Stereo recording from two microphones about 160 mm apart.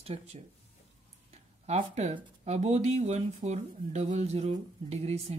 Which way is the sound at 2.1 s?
45° right (ahead or behind).